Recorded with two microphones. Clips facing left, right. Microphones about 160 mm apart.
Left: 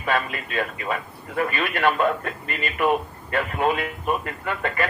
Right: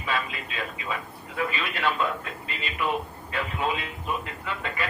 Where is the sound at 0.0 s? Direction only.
55° left (ahead or behind).